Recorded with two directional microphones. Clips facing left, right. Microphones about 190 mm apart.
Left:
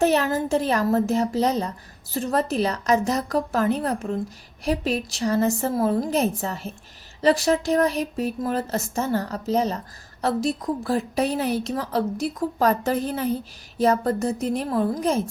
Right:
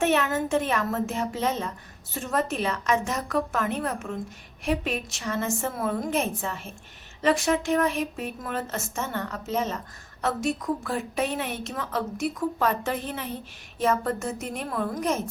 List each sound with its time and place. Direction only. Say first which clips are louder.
0.0 s speech: left 3 dB; 35° left (ahead or behind)